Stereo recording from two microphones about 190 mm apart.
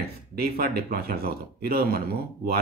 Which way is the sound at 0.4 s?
55° right (ahead or behind).